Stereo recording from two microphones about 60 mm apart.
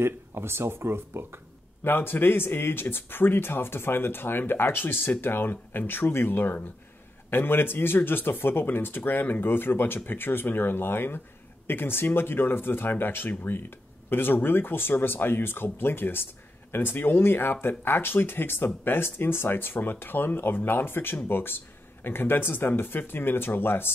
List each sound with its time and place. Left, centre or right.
0.0 s speech: right
1.9 s speech: left